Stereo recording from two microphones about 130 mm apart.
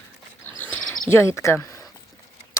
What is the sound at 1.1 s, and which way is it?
Speech, 20° left (ahead or behind).